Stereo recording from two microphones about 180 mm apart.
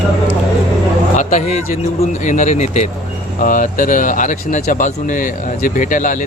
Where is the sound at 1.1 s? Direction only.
40° left (ahead or behind).